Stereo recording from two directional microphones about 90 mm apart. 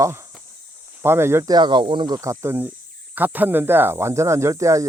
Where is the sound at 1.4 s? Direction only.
55° right (ahead or behind).